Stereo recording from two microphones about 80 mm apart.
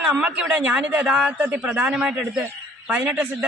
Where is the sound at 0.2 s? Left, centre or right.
Centre.